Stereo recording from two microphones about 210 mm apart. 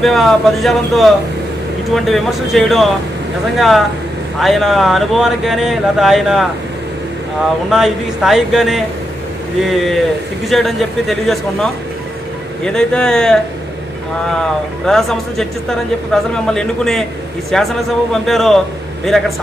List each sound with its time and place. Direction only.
0.0 s speech: centre (ahead or behind)
7.7 s speech: centre (ahead or behind)
10.5 s speech: centre (ahead or behind)
14.9 s speech: centre (ahead or behind)